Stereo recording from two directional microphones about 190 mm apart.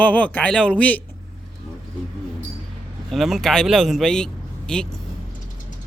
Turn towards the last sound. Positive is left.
turn(degrees=5)  # may be behind; listen again after turning